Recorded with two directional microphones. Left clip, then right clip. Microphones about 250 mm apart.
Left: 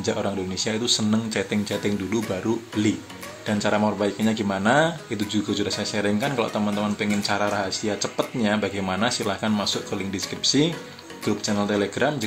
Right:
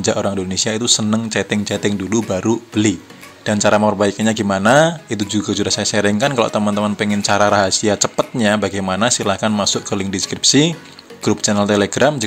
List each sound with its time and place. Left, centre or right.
0.0 s a man's voice: right